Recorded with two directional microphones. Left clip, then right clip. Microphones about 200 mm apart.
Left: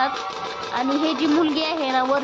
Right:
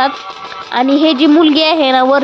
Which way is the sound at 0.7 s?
40° right (ahead or behind).